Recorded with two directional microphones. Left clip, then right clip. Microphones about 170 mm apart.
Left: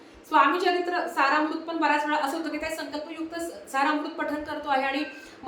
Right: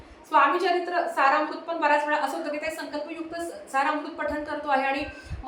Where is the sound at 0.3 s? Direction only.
5° left (ahead or behind).